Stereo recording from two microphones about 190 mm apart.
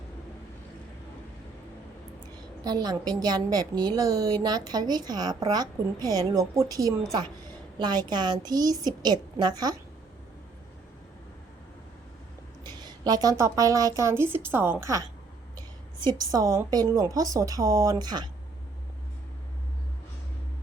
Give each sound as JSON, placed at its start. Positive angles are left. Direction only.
{"t": 2.6, "sound": "a woman's voice", "side_deg": -20}
{"t": 12.6, "sound": "a woman's voice", "side_deg": -20}